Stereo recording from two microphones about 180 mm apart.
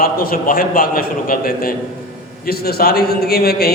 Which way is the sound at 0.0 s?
55° left (ahead or behind).